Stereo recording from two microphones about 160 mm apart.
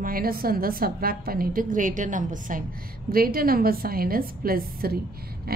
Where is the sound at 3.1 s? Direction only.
65° right (ahead or behind).